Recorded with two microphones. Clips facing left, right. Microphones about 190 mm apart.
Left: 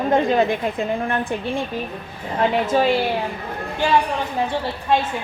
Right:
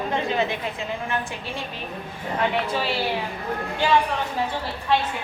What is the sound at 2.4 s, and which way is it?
Speech, 45° left (ahead or behind).